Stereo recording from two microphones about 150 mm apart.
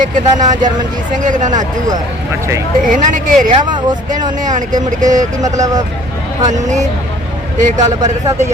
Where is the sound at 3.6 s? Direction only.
30° right (ahead or behind).